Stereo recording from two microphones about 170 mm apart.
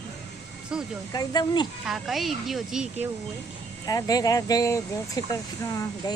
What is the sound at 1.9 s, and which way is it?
Speech, centre (ahead or behind).